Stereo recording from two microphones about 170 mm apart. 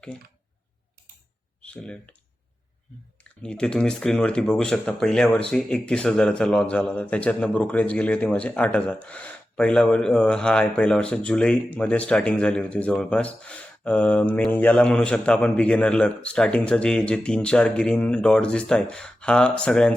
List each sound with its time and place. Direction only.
1.6 s speech: 5° left (ahead or behind)
3.4 s speech: 5° left (ahead or behind)